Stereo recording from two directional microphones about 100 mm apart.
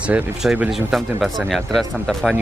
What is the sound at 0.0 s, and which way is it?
Speech, 10° right (ahead or behind).